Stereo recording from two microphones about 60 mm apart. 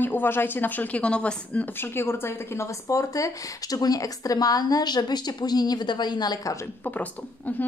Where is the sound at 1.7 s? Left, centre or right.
Left.